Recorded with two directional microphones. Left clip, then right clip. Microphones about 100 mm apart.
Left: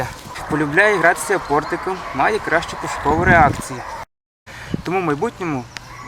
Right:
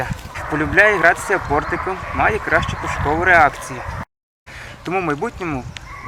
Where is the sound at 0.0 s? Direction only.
5° left (ahead or behind).